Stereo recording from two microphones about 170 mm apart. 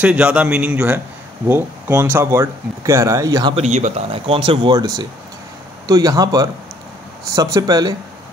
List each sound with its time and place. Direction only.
0.0 s speech: 5° right (ahead or behind)
3.5 s speech: 40° right (ahead or behind); by 7.9 s 25° right (ahead or behind)